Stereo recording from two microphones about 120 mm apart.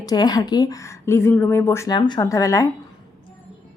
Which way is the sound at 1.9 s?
35° left (ahead or behind).